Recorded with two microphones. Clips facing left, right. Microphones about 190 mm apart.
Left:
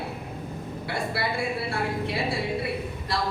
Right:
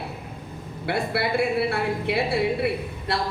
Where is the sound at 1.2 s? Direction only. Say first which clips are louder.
Right 8 dB; 60° right (ahead or behind).